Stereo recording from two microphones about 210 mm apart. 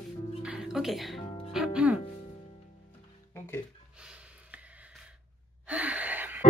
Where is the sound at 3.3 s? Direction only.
10° left (ahead or behind).